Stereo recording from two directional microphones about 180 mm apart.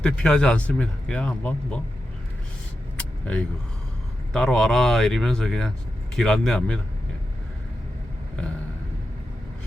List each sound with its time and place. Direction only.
0.0 s speech: 5° left (ahead or behind)
3.0 s vehicle: 5° left (ahead or behind)
4.3 s speech: 5° left (ahead or behind)